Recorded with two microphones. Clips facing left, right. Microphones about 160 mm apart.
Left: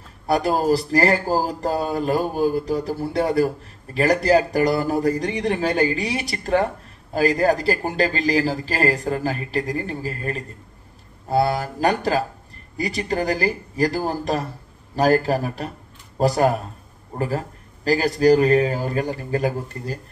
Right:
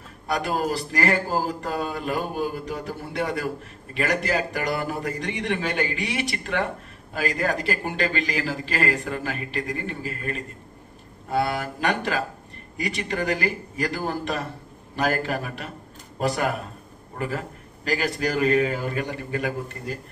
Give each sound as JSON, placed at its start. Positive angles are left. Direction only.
{"t": 0.3, "sound": "speech", "side_deg": 35}